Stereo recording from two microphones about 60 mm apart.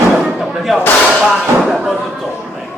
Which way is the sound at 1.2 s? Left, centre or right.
Centre.